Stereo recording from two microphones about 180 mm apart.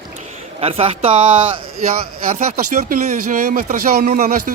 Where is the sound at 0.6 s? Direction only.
30° right (ahead or behind).